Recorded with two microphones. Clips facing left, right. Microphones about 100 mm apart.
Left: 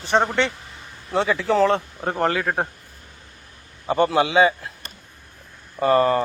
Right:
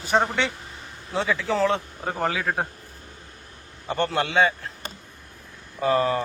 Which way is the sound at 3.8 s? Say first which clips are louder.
Left 6 dB; 5° left (ahead or behind).